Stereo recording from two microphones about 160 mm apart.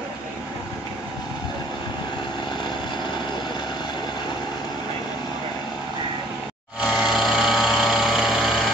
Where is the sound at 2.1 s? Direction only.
30° left (ahead or behind).